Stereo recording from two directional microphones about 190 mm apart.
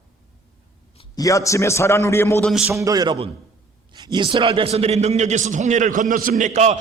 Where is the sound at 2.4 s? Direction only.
Centre (ahead or behind).